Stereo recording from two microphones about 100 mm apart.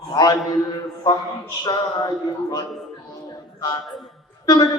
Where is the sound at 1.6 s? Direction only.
45° left (ahead or behind).